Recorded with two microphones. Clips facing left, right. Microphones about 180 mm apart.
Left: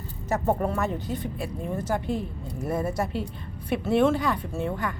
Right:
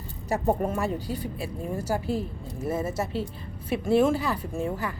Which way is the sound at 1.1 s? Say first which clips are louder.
Left 1 dB; 5° right (ahead or behind).